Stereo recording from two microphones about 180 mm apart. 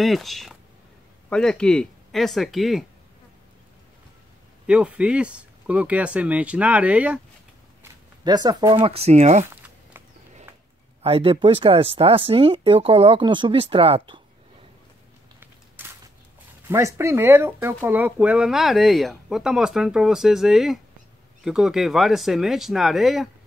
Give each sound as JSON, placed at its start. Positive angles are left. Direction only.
{"t": 0.0, "sound": "speech", "side_deg": 0}
{"t": 4.6, "sound": "speech", "side_deg": -5}
{"t": 7.8, "sound": "speech", "side_deg": -20}
{"t": 9.5, "sound": "a sound", "side_deg": -10}
{"t": 11.0, "sound": "speech", "side_deg": -30}
{"t": 15.4, "sound": "a sound", "side_deg": -10}
{"t": 16.6, "sound": "speech", "side_deg": -15}